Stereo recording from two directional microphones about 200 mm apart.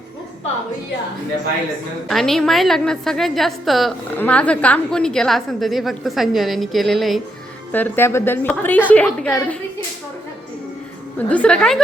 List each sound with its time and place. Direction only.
2.0 s a woman's voice: centre (ahead or behind)
11.3 s a woman's voice: 5° left (ahead or behind)